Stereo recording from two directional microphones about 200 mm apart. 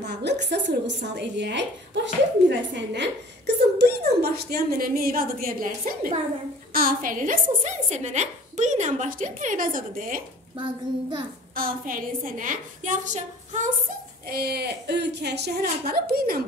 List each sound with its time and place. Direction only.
0.0 s a woman's voice: 55° right (ahead or behind)
2.7 s a woman's voice: 60° right (ahead or behind); by 10.2 s 45° right (ahead or behind)
10.6 s a child's voice: 25° right (ahead or behind)
11.5 s a woman's voice: 45° right (ahead or behind)
14.2 s a woman's voice: 50° right (ahead or behind)